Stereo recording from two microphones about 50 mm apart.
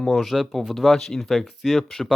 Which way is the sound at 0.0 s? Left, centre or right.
Centre.